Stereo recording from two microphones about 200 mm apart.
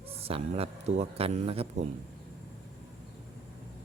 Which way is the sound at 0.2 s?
30° right (ahead or behind).